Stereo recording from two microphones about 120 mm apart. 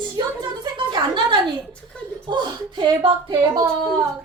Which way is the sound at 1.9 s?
10° left (ahead or behind).